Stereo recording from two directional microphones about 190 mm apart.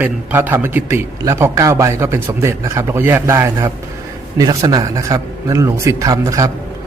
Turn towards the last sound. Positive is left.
turn(degrees=-15)  # may be behind; listen again after turning